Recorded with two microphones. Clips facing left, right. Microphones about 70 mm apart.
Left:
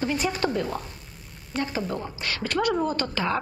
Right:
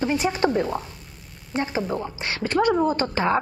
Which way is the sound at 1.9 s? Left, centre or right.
Centre.